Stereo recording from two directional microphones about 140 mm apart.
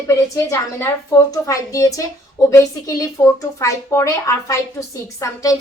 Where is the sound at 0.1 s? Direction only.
20° left (ahead or behind).